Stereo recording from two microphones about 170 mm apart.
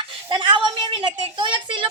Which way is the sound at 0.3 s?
25° right (ahead or behind).